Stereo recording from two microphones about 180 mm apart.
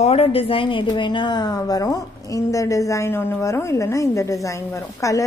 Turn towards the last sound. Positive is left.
turn(degrees=20)  # may be behind; listen again after turning